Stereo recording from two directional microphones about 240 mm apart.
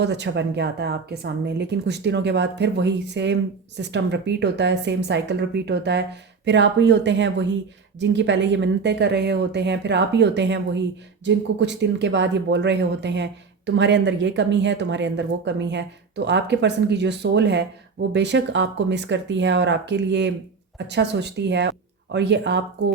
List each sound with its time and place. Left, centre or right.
0.0 s speech: right